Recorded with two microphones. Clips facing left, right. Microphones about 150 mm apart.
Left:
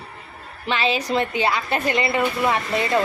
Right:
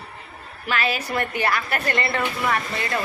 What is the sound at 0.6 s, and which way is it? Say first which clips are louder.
A woman's voice: left 3 dB; 25° left (ahead or behind).